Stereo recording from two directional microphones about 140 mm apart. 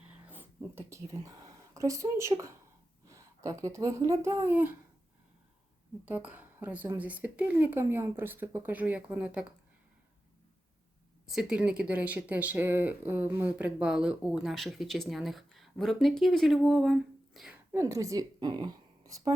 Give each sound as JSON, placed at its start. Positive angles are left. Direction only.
{"t": 0.3, "sound": "speech", "side_deg": -15}
{"t": 6.1, "sound": "a woman's voice", "side_deg": -10}
{"t": 11.3, "sound": "speech", "side_deg": -5}
{"t": 17.7, "sound": "speech", "side_deg": -20}